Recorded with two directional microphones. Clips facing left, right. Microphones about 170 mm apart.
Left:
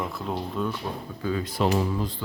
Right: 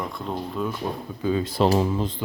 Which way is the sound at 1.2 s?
20° right (ahead or behind).